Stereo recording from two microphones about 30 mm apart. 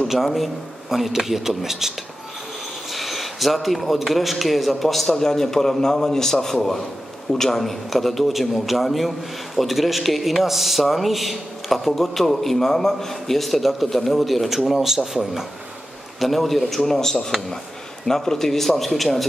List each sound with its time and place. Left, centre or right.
0.1 s a man's voice: centre
2.9 s a man's voice: centre
5.2 s a man's voice: centre
14.7 s speech: centre
16.2 s a man's voice: centre